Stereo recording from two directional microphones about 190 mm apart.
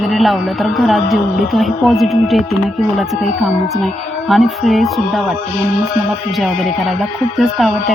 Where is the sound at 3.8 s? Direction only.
Centre (ahead or behind).